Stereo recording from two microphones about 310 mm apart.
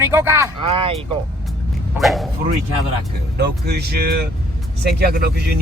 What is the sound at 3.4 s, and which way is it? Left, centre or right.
Speech, right.